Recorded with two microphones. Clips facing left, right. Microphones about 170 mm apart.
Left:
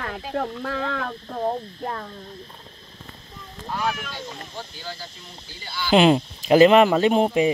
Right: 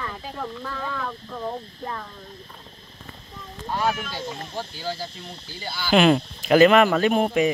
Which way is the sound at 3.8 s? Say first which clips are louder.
Right 2 dB; 30° right (ahead or behind).